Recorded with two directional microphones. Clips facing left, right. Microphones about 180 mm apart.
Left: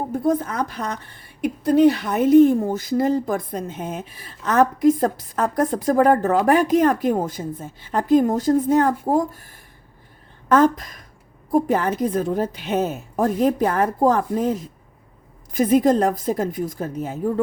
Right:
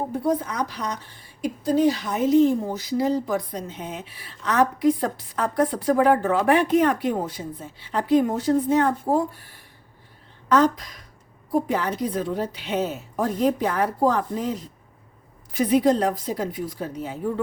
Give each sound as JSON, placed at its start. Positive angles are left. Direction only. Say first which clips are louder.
{"t": 0.3, "sound": "a woman's voice", "louder": "left 4 dB", "side_deg": 50}